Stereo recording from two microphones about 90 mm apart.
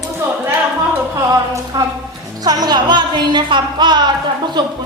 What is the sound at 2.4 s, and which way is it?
A woman's voice, 45° right (ahead or behind).